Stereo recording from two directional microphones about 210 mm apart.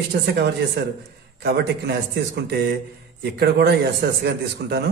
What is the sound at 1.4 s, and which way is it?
A man's voice, 50° right (ahead or behind).